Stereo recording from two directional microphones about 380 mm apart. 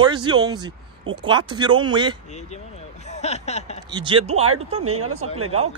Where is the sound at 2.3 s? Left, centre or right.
Centre.